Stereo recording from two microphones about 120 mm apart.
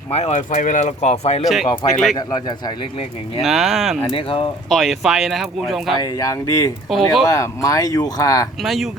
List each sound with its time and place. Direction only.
0.1 s speech: 65° left (ahead or behind)
1.6 s speech: 40° left (ahead or behind)
3.4 s speech: centre (ahead or behind)
4.1 s speech: 50° left (ahead or behind)
4.7 s speech: centre (ahead or behind)
6.0 s speech: 30° left (ahead or behind)
6.9 s speech: centre (ahead or behind)
7.3 s speech: 25° left (ahead or behind)
8.6 s speech: centre (ahead or behind)